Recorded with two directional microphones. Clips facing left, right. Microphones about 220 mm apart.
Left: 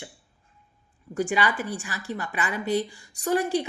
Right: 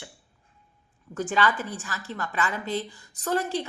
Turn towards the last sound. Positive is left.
turn(degrees=15)  # may be behind; listen again after turning